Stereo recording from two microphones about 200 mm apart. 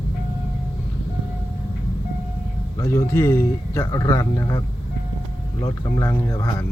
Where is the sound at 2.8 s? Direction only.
15° left (ahead or behind).